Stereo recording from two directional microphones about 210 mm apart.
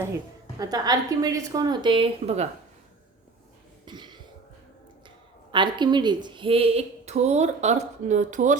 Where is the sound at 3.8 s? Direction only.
20° right (ahead or behind).